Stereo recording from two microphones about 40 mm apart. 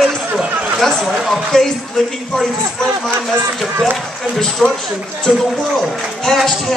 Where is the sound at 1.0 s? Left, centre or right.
Centre.